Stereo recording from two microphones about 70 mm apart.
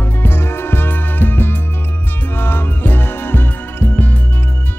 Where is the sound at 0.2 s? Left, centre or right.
Left.